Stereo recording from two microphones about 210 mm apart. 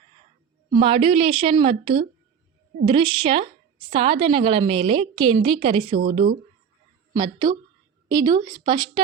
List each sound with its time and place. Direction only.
0.7 s a woman's voice: 25° right (ahead or behind)